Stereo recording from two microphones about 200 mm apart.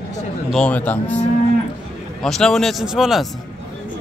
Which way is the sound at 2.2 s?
5° left (ahead or behind).